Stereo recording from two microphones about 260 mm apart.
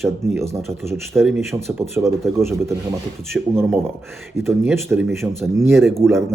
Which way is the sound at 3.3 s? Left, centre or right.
Centre.